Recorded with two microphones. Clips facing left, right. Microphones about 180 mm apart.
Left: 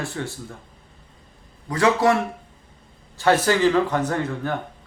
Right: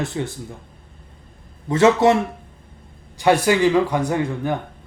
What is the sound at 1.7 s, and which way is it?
Speech, 25° right (ahead or behind).